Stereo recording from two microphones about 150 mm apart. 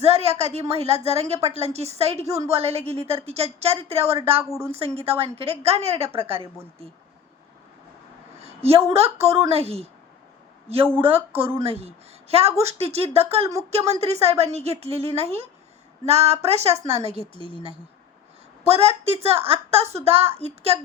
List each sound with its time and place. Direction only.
0.0 s a woman's voice: 45° right (ahead or behind)
8.4 s a woman's voice: 40° right (ahead or behind)
10.9 s a woman's voice: 40° right (ahead or behind)
18.6 s a woman's voice: 40° right (ahead or behind)